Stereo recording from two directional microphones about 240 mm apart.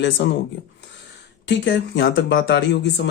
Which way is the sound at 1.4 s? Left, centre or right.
Left.